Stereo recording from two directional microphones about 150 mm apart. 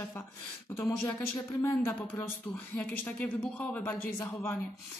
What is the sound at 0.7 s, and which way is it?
Speech, 15° left (ahead or behind).